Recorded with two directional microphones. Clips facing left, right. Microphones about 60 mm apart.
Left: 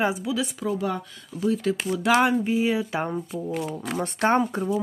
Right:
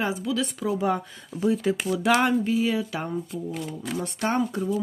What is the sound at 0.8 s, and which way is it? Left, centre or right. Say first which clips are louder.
Speech: right 3 dB; right.